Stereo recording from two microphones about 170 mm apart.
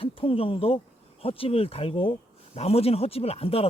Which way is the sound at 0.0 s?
35° left (ahead or behind).